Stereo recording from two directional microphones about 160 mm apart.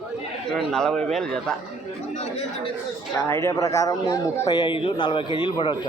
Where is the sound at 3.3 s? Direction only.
15° left (ahead or behind).